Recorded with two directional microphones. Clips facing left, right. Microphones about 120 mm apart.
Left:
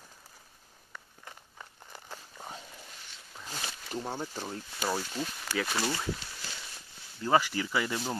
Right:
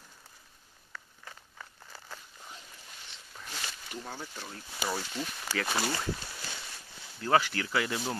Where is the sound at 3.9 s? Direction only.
30° left (ahead or behind).